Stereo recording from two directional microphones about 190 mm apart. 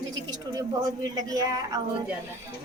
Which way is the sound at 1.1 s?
20° right (ahead or behind).